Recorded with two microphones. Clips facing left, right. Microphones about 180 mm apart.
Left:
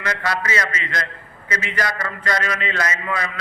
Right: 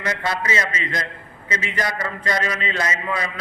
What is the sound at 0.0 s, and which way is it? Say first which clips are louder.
A man's voice: even; 25° right (ahead or behind).